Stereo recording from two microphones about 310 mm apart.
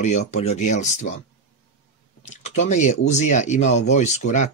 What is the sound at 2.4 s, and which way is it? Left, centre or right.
Speech, left.